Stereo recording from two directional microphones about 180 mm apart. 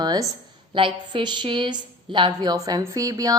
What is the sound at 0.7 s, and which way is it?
A woman's voice, 30° right (ahead or behind).